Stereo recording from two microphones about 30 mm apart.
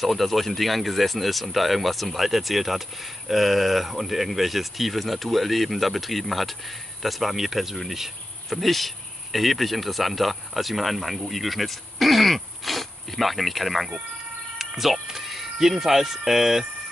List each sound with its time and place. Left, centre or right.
0.0 s speech: centre